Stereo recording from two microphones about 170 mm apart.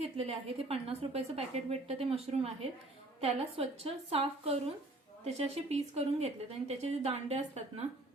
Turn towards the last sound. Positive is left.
turn(degrees=-40)  # may be behind; listen again after turning